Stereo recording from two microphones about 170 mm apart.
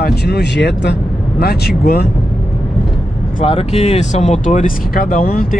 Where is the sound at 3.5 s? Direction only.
35° left (ahead or behind).